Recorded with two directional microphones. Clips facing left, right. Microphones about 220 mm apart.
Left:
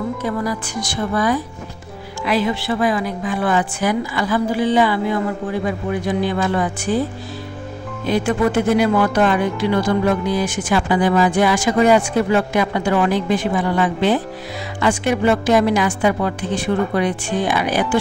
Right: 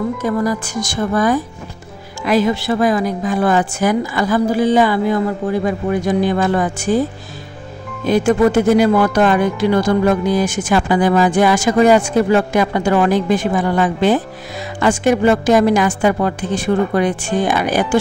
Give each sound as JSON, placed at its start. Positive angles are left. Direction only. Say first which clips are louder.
{"t": 0.2, "sound": "speech", "louder": "right 4 dB", "side_deg": -45}
{"t": 8.1, "sound": "speech", "louder": "right 5 dB", "side_deg": -45}